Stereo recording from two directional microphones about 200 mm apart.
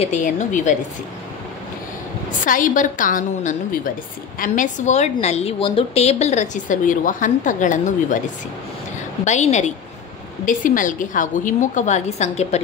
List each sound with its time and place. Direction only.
0.0 s a woman's voice: 35° left (ahead or behind)
2.4 s a woman's voice: 40° left (ahead or behind)
9.2 s a woman's voice: 35° left (ahead or behind)